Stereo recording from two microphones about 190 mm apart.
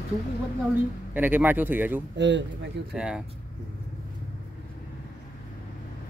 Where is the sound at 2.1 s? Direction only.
70° right (ahead or behind).